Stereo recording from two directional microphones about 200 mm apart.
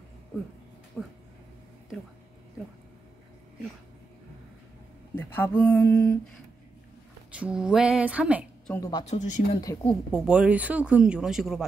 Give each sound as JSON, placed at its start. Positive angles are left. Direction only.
{"t": 1.0, "sound": "mantra", "side_deg": 10}
{"t": 5.1, "sound": "speech", "side_deg": 10}
{"t": 5.6, "sound": "mantra", "side_deg": 10}
{"t": 7.3, "sound": "speech", "side_deg": -5}
{"t": 9.0, "sound": "speech", "side_deg": 35}
{"t": 9.8, "sound": "speech", "side_deg": -5}